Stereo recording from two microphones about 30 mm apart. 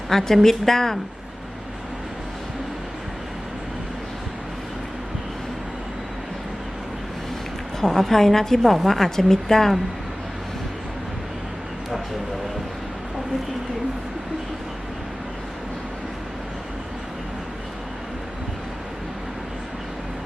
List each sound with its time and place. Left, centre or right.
0.1 s a woman's voice: centre
7.8 s a woman's voice: centre